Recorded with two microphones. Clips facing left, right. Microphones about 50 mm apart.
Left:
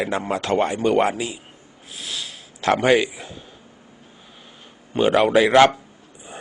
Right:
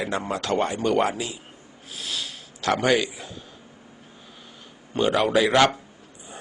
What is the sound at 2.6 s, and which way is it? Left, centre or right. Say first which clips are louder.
Speech: left 4 dB; left.